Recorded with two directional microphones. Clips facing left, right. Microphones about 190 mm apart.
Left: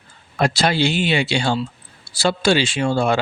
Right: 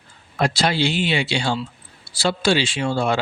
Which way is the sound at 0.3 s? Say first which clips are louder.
Left 2 dB; 50° left (ahead or behind).